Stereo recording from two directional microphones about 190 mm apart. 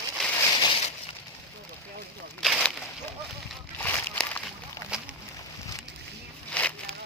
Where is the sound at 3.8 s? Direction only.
5° left (ahead or behind).